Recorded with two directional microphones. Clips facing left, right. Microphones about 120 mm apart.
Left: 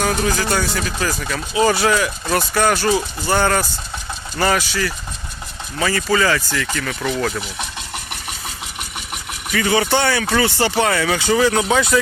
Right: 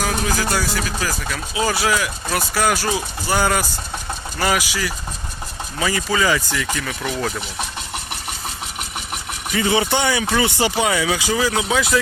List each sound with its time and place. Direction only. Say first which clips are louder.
0.0 s speech: left 2 dB; 5° right (ahead or behind)
9.5 s speech: left 1 dB; 20° right (ahead or behind); by 11.9 s centre (ahead or behind)